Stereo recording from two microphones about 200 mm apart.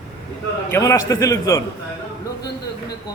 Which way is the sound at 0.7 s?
15° left (ahead or behind).